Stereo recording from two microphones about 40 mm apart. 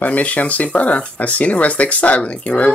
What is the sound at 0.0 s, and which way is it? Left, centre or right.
Speech, left.